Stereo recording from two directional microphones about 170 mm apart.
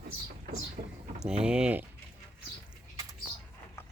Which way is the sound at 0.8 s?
60° right (ahead or behind).